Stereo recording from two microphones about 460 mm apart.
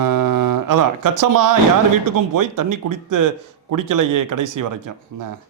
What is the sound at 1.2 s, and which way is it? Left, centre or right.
Speech, right.